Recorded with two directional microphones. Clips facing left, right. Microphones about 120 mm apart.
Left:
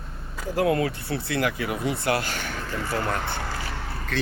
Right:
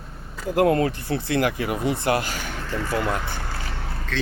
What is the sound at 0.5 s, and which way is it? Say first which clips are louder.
Speech: right 4 dB; 45° right (ahead or behind).